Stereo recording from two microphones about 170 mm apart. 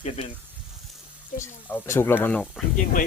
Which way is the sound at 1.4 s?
15° left (ahead or behind).